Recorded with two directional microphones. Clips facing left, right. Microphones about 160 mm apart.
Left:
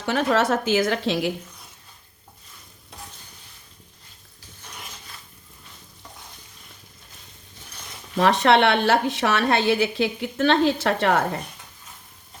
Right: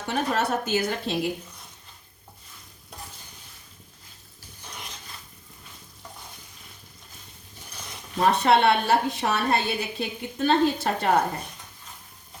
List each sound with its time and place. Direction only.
0.0 s a woman's voice: 90° left
8.2 s a woman's voice: 90° left